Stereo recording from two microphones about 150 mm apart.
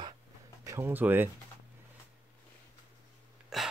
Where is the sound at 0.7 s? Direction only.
15° right (ahead or behind).